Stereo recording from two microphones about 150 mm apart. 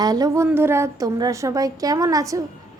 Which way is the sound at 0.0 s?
25° right (ahead or behind).